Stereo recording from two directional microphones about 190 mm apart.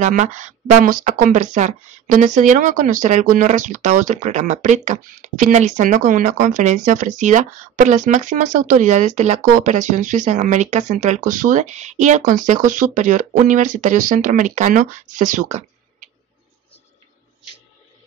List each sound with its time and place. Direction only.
0.0 s speech: 40° right (ahead or behind)